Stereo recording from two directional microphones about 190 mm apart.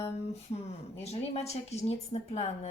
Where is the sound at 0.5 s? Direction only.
30° left (ahead or behind).